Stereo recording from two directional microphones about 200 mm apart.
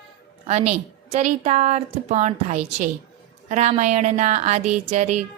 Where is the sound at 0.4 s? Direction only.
35° right (ahead or behind).